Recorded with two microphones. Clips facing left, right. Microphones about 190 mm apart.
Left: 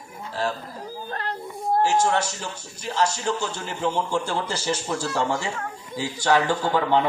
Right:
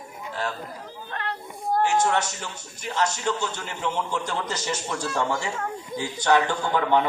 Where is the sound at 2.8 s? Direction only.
30° left (ahead or behind).